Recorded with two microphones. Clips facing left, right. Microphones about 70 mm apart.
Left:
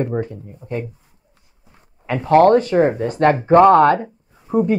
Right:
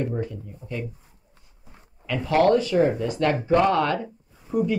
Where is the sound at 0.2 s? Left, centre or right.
Left.